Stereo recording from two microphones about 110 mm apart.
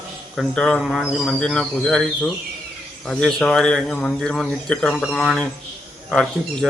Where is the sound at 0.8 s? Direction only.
5° right (ahead or behind).